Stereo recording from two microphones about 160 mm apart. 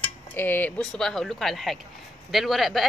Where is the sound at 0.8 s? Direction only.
5° left (ahead or behind).